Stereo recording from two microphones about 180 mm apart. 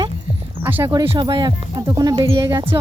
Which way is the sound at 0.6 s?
15° right (ahead or behind).